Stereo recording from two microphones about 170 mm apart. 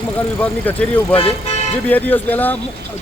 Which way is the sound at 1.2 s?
35° left (ahead or behind).